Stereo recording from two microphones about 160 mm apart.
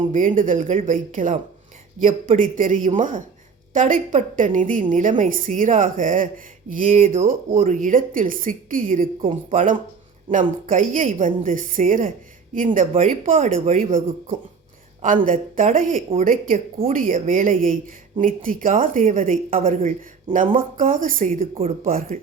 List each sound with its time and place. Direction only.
0.0 s a woman's voice: 50° right (ahead or behind)
15.0 s a woman's voice: 55° right (ahead or behind)